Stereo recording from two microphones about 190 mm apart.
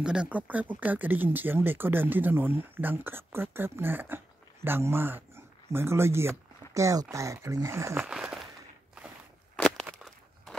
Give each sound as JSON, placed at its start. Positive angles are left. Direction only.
{"t": 0.0, "sound": "speech", "side_deg": -5}
{"t": 9.6, "sound": "walk", "side_deg": 0}